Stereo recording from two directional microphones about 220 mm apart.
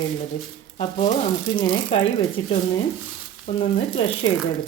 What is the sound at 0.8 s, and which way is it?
Speech, 25° left (ahead or behind).